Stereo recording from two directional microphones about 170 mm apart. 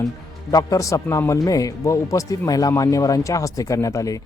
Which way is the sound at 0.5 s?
20° left (ahead or behind).